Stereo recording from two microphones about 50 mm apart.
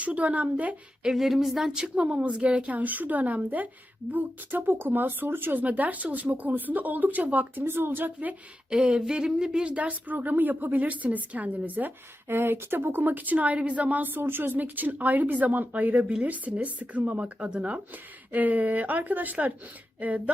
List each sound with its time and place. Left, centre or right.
0.0 s a woman's voice: right
1.1 s a sound: centre
1.8 s a woman's voice: right
5.6 s a woman's voice: right
7.6 s speech: right
8.7 s a woman's voice: centre; by 11.9 s right
12.3 s a woman's voice: right